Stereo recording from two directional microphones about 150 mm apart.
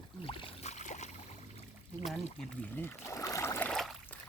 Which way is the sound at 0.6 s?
50° left (ahead or behind).